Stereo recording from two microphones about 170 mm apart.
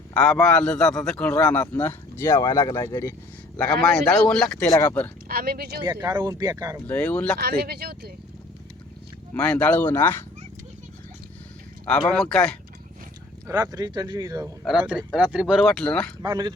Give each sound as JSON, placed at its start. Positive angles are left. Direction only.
{"t": 0.1, "sound": "a man's voice", "side_deg": 5}
{"t": 3.6, "sound": "speech", "side_deg": 5}
{"t": 4.6, "sound": "a man's voice", "side_deg": 15}
{"t": 5.3, "sound": "speech", "side_deg": -60}
{"t": 5.8, "sound": "speech", "side_deg": -20}
{"t": 6.8, "sound": "a man's voice", "side_deg": 10}
{"t": 7.3, "sound": "speech", "side_deg": -65}
{"t": 9.3, "sound": "a man's voice", "side_deg": 5}
{"t": 12.1, "sound": "speech", "side_deg": 5}
{"t": 13.5, "sound": "speech", "side_deg": -20}
{"t": 14.6, "sound": "speech", "side_deg": -5}
{"t": 16.2, "sound": "speech", "side_deg": -25}